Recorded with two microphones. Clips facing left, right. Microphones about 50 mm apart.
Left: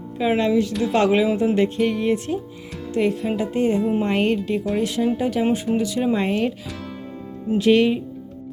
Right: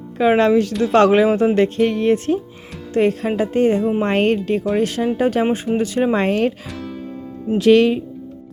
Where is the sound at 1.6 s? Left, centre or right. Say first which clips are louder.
Right 4 dB; right.